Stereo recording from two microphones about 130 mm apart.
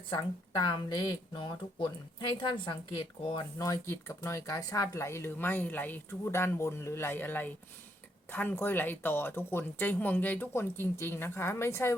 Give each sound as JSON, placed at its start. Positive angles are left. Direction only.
{"t": 0.1, "sound": "speech", "side_deg": 35}